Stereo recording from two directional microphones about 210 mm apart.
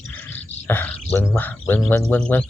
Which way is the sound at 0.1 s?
10° left (ahead or behind).